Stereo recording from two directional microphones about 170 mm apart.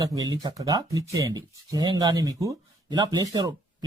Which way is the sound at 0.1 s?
20° right (ahead or behind).